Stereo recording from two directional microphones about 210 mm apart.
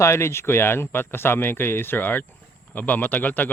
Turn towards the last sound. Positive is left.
turn(degrees=10)  # may be behind; listen again after turning